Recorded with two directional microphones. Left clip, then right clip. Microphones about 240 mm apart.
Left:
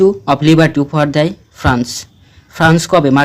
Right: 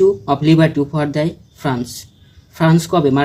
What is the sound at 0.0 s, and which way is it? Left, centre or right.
Speech, left.